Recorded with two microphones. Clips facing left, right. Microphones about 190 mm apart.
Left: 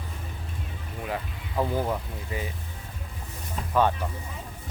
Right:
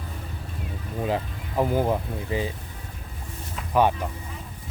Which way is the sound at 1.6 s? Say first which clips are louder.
Right 5 dB; 20° right (ahead or behind).